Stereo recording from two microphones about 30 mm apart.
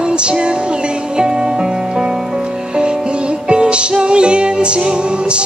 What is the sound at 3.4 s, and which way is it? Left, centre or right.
Music, right.